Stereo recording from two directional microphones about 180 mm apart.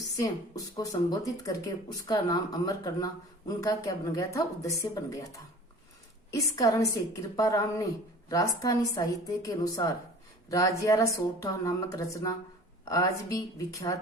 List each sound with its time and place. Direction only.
0.2 s speech: 20° left (ahead or behind)